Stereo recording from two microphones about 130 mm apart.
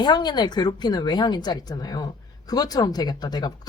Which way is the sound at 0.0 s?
35° left (ahead or behind).